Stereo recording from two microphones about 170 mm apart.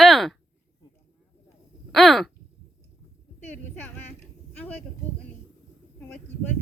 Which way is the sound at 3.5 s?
10° left (ahead or behind).